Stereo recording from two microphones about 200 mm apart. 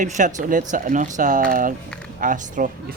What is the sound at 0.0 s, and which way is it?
Speech, 40° right (ahead or behind).